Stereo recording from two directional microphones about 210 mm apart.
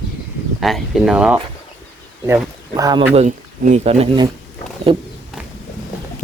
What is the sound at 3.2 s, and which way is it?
Speech, 35° right (ahead or behind).